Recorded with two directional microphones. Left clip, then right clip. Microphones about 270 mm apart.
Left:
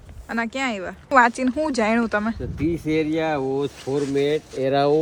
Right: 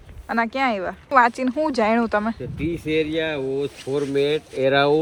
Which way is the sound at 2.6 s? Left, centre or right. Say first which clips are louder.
Even; left.